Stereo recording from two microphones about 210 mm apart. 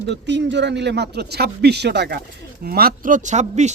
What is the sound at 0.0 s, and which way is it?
Speech, 55° right (ahead or behind).